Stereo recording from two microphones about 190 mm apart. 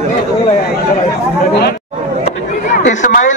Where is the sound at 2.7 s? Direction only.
45° left (ahead or behind).